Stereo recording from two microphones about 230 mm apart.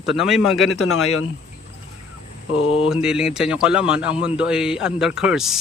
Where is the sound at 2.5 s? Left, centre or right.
Left.